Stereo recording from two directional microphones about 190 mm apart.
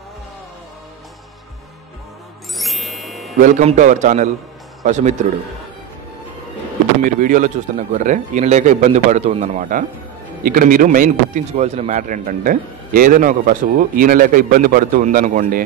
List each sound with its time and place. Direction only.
2.5 s music: centre (ahead or behind)
3.3 s speech: 40° right (ahead or behind)
7.0 s a man's voice: 45° right (ahead or behind)